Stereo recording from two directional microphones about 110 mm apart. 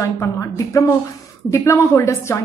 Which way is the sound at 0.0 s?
25° left (ahead or behind).